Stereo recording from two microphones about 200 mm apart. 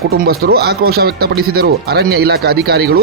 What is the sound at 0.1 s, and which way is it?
Speech, 50° right (ahead or behind).